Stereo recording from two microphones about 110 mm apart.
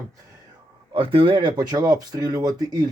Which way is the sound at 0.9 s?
55° right (ahead or behind).